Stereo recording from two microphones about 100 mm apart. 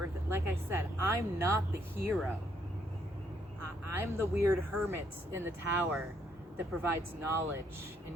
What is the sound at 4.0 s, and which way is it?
Speech, 25° right (ahead or behind).